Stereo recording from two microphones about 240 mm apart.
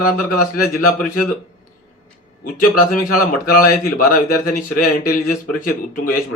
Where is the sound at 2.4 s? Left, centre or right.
Left.